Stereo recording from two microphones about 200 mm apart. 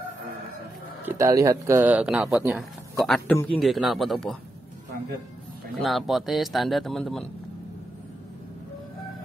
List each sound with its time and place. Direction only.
1.0 s a man's voice: 15° right (ahead or behind); by 4.4 s centre (ahead or behind)
5.8 s a man's voice: centre (ahead or behind)